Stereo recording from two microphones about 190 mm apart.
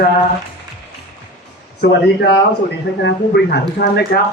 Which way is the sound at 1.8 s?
65° left (ahead or behind).